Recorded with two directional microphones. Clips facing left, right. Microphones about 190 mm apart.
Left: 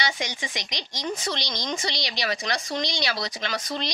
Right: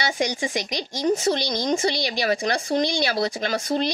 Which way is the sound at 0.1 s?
40° right (ahead or behind).